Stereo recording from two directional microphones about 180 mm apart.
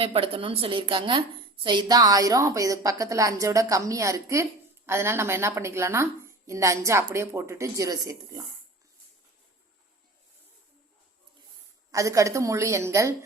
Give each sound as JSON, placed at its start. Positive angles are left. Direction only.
{"t": 0.0, "sound": "a woman's voice", "side_deg": -30}
{"t": 11.9, "sound": "a woman's voice", "side_deg": -20}